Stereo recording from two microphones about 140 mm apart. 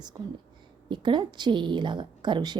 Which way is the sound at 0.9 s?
35° right (ahead or behind).